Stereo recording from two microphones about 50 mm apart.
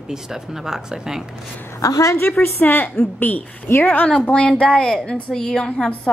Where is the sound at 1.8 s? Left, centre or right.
Left.